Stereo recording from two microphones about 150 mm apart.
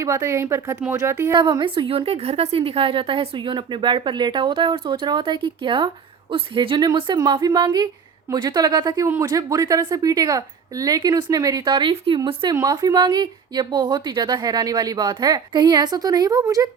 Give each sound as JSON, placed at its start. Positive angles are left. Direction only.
{"t": 0.0, "sound": "speech", "side_deg": -20}
{"t": 1.3, "sound": "a woman's voice", "side_deg": -30}